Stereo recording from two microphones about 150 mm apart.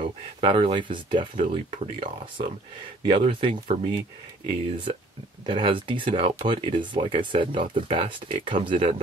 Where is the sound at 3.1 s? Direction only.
35° right (ahead or behind).